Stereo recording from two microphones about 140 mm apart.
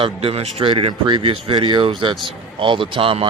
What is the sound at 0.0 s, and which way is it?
Speech, 45° right (ahead or behind).